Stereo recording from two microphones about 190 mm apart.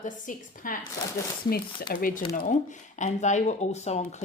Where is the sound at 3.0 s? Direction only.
40° left (ahead or behind).